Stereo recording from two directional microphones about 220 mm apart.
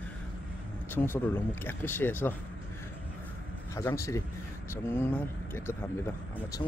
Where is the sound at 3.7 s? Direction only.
15° left (ahead or behind).